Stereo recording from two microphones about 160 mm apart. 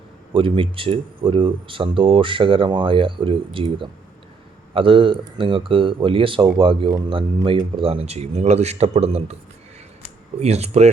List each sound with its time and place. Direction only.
0.3 s speech: 35° right (ahead or behind)
10.4 s speech: 40° right (ahead or behind)